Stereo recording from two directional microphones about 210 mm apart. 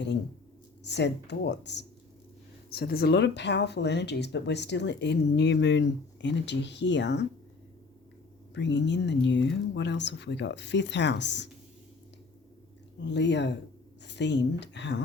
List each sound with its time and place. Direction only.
0.9 s speech: 55° left (ahead or behind)
8.5 s speech: 55° left (ahead or behind)
13.0 s speech: 55° left (ahead or behind)